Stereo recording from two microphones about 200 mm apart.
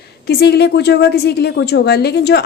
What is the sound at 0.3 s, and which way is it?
A woman's voice, 55° left (ahead or behind).